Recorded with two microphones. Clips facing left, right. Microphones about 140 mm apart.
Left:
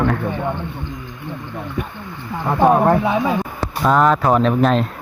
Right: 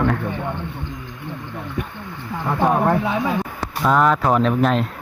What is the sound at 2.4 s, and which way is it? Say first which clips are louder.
Speech: left 4 dB; 40° left (ahead or behind).